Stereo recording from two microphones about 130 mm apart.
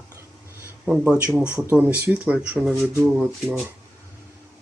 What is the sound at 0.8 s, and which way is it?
Speech, 5° right (ahead or behind).